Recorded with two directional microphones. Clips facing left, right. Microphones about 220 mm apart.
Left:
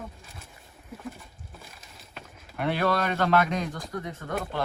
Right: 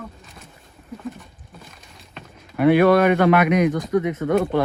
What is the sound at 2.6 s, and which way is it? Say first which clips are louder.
Speech: right 12 dB; 55° right (ahead or behind).